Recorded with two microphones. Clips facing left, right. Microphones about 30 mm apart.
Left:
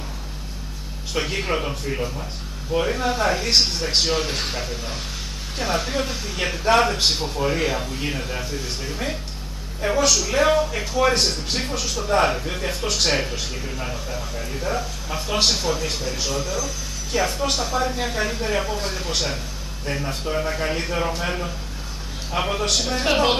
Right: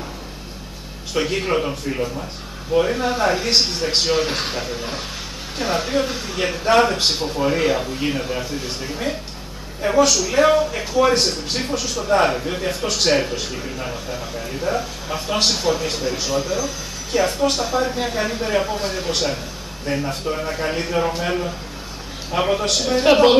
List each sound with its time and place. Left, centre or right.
1.1 s a man's voice: centre
17.1 s a man's voice: centre